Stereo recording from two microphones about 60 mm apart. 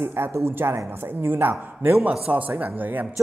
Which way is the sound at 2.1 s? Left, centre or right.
Right.